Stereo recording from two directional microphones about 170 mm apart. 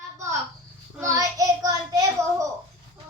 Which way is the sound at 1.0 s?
20° right (ahead or behind).